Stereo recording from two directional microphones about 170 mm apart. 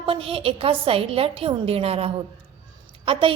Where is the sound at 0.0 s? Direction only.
35° right (ahead or behind).